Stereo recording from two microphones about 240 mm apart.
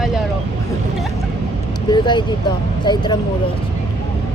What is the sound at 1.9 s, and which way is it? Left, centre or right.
Speech, centre.